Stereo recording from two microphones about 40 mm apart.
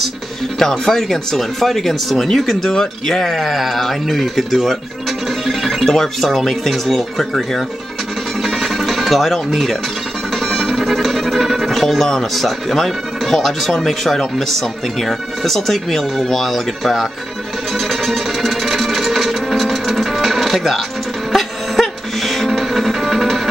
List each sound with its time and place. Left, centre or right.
0.6 s speech: centre
5.5 s music: centre
5.9 s speech: centre
8.4 s music: centre
9.5 s speech: centre
10.4 s music: centre
12.4 s speech: centre
17.7 s music: centre